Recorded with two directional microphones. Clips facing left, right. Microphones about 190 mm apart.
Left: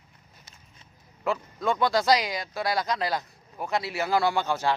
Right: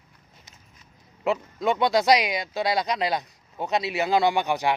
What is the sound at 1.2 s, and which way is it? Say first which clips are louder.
Speech: right 3 dB; 20° right (ahead or behind).